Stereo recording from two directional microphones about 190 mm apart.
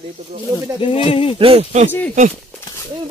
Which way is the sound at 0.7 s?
30° left (ahead or behind).